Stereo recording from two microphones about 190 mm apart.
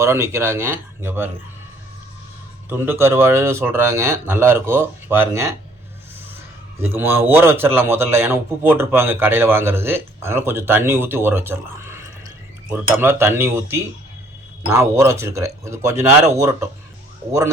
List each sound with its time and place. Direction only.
0.0 s a man's voice: 15° right (ahead or behind)
2.6 s a man's voice: 10° right (ahead or behind)
6.8 s a man's voice: 10° right (ahead or behind)